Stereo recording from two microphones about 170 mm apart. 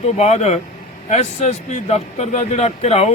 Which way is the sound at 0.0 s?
40° left (ahead or behind).